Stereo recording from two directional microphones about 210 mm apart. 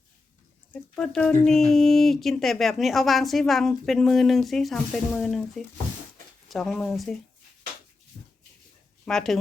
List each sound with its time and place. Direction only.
0.7 s speech: 5° left (ahead or behind)
8.1 s a sound: 30° right (ahead or behind)
9.0 s speech: centre (ahead or behind)